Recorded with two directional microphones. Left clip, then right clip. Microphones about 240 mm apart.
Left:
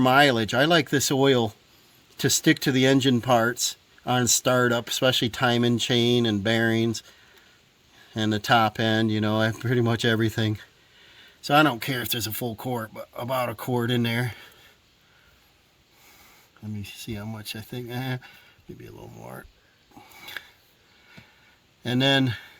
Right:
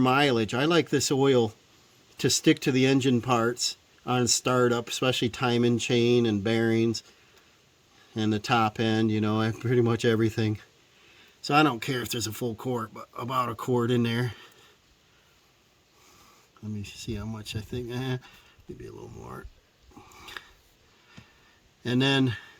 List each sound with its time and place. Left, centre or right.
0.0 s speech: left
8.1 s speech: left
16.6 s speech: centre
20.1 s a sound: centre
21.8 s speech: centre